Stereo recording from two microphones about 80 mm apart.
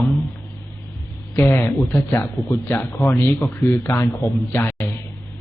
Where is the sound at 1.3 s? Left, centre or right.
Left.